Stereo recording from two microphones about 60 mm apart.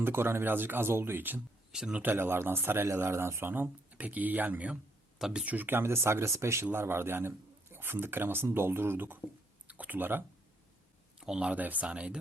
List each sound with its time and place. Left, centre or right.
0.0 s speech: right
1.7 s speech: centre
2.0 s speech: right
3.5 s speech: right
5.2 s speech: centre
5.5 s speech: right
9.6 s speech: right
11.2 s speech: centre
11.5 s speech: right